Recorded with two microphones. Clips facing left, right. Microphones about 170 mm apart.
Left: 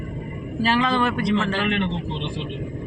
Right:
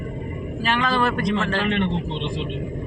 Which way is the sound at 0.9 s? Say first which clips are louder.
Even; 15° left (ahead or behind).